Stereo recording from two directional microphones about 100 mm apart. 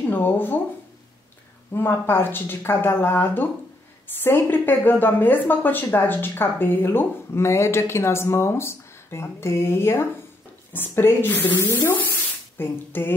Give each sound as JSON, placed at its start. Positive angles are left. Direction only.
{"t": 0.1, "sound": "speech", "side_deg": 20}
{"t": 1.7, "sound": "a woman's voice", "side_deg": 25}